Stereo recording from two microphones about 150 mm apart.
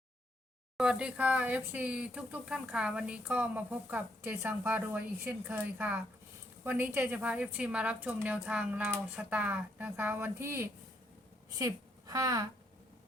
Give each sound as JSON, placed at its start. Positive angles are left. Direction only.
{"t": 0.8, "sound": "a woman's voice", "side_deg": -5}